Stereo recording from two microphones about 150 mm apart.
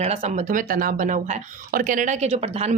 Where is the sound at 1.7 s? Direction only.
65° right (ahead or behind); by 2.7 s 45° right (ahead or behind).